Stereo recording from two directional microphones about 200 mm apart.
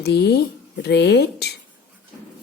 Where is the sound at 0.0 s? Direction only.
55° left (ahead or behind).